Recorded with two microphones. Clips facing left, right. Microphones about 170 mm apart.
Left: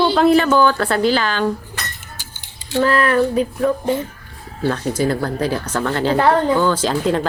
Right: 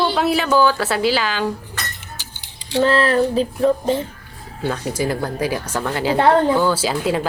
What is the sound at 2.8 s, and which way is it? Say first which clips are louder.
Music: even; 30° right (ahead or behind).